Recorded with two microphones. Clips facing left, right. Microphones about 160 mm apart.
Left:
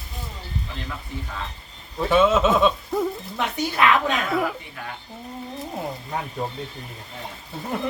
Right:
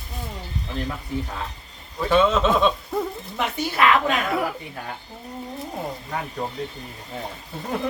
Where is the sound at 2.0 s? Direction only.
5° left (ahead or behind).